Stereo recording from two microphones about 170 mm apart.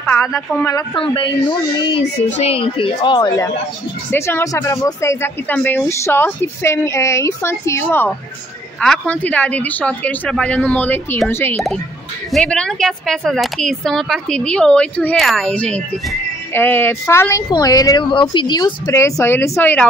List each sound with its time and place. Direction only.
0.0 s speech: 15° left (ahead or behind)
0.9 s speech: 30° left (ahead or behind)
2.2 s a woman's voice: 40° left (ahead or behind); by 3.4 s 25° left (ahead or behind)
4.1 s speech: 15° left (ahead or behind)